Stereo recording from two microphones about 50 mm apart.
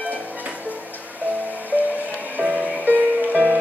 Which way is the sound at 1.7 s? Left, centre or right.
Right.